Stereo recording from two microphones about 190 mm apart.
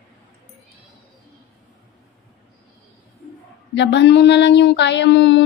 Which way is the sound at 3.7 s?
65° left (ahead or behind).